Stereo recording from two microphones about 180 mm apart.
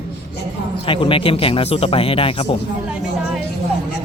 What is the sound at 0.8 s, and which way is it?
Speech, 30° left (ahead or behind).